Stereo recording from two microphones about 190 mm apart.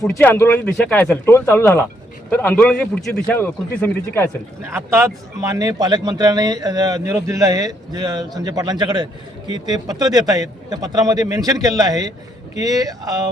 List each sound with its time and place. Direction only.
0.0 s a man's voice: 10° left (ahead or behind)
4.7 s speech: 15° right (ahead or behind)